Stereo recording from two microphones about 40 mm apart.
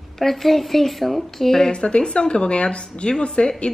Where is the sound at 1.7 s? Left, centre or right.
Left.